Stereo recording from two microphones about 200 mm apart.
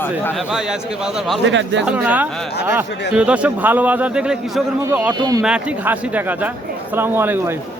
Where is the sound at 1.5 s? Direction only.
65° right (ahead or behind).